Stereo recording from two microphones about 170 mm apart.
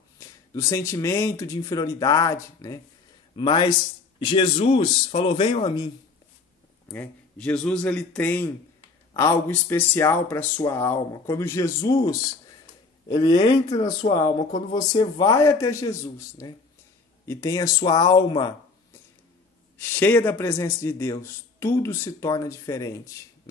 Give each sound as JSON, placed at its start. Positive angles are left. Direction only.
{"t": 0.2, "sound": "speech", "side_deg": 20}
{"t": 6.9, "sound": "a man's voice", "side_deg": 10}
{"t": 13.2, "sound": "speech", "side_deg": 25}
{"t": 14.0, "sound": "speech", "side_deg": 35}
{"t": 14.7, "sound": "speech", "side_deg": 25}
{"t": 19.8, "sound": "a man's voice", "side_deg": 10}